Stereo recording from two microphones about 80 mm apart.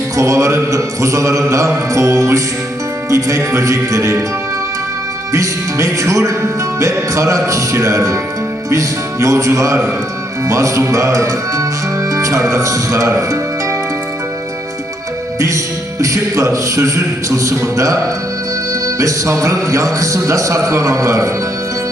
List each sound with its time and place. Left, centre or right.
0.2 s mantra: right
5.3 s music: right
6.7 s mantra: right
9.2 s mantra: right
12.1 s speech: right
16.0 s mantra: right
18.7 s music: right
19.6 s mantra: right